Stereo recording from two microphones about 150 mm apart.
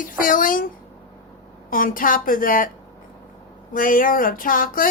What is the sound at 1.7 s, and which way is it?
Speech, 65° left (ahead or behind).